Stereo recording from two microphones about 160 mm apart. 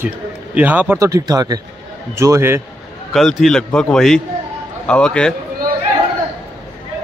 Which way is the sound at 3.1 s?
Centre (ahead or behind).